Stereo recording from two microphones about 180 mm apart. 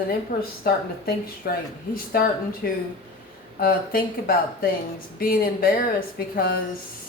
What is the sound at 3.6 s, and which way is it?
Speech, 55° left (ahead or behind).